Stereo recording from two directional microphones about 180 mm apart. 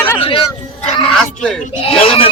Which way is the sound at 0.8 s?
5° left (ahead or behind).